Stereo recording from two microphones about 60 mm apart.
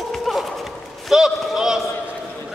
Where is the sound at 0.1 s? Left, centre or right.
Centre.